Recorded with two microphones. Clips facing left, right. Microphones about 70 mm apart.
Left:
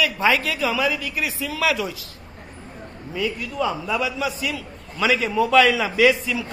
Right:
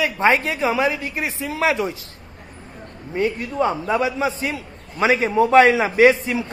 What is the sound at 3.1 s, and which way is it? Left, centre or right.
A man's voice, right.